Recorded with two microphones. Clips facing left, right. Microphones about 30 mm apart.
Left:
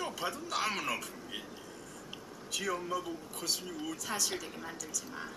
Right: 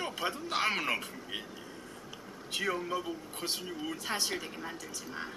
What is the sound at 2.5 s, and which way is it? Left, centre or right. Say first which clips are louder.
Speech: right 2 dB; right.